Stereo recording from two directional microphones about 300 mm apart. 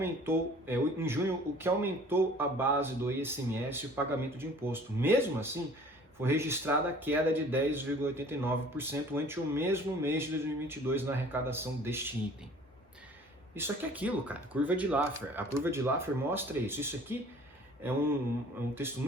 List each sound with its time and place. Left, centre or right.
0.0 s a man's voice: centre
13.6 s a man's voice: centre